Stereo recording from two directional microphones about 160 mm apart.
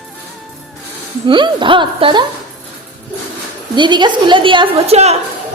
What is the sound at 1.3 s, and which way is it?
Speech, 30° right (ahead or behind).